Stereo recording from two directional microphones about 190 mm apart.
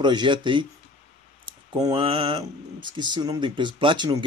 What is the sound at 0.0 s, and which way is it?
Speech, 25° right (ahead or behind).